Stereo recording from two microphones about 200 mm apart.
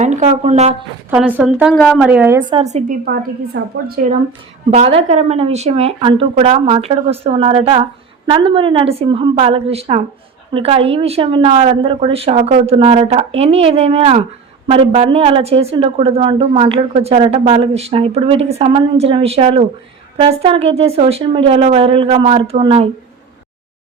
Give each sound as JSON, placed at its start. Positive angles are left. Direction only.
{"t": 0.0, "sound": "speech", "side_deg": -35}
{"t": 1.1, "sound": "speech", "side_deg": -5}
{"t": 2.5, "sound": "speech", "side_deg": -30}
{"t": 3.0, "sound": "a woman's voice", "side_deg": -50}
{"t": 4.7, "sound": "a woman's voice", "side_deg": -30}